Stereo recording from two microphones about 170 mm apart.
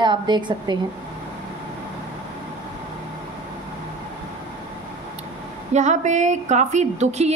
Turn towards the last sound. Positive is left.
turn(degrees=-40)  # may be behind; listen again after turning